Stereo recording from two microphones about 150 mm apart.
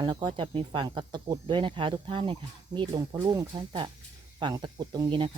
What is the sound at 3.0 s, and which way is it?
Speech, 20° right (ahead or behind).